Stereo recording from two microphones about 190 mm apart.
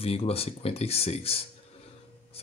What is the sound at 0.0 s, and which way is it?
Speech, 30° left (ahead or behind).